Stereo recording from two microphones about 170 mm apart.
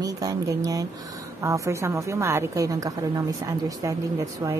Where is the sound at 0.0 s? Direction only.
20° right (ahead or behind).